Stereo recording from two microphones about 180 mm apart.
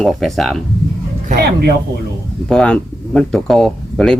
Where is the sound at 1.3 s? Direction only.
60° right (ahead or behind).